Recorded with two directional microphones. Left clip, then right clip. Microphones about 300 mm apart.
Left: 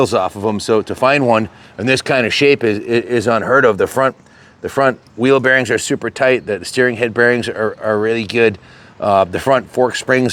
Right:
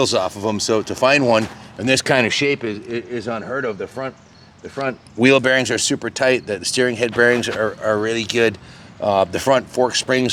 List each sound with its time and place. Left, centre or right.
0.0 s speech: left
2.0 s speech: centre
2.5 s speech: left
2.9 s speech: left
4.6 s speech: left
5.4 s speech: left